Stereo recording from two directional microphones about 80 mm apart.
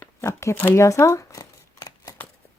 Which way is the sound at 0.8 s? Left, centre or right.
Left.